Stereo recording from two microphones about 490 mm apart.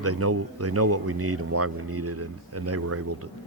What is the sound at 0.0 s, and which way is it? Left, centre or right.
Speech, right.